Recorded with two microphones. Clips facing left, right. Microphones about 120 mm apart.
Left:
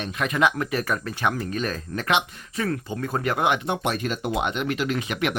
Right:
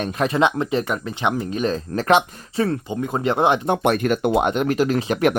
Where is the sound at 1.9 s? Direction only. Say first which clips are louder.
Right 7 dB; 40° right (ahead or behind).